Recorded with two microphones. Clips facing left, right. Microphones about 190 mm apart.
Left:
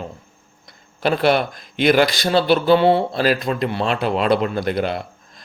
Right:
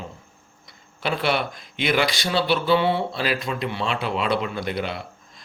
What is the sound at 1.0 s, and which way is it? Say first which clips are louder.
Speech: left 7 dB; 40° left (ahead or behind).